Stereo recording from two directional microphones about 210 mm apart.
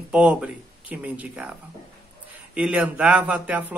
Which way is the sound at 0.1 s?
5° right (ahead or behind).